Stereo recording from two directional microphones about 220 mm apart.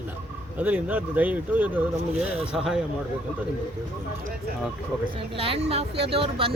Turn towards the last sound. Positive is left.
turn(degrees=-25)  # may be behind; listen again after turning